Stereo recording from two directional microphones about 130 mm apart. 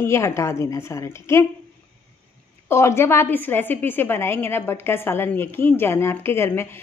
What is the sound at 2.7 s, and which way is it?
A woman's voice, 20° left (ahead or behind).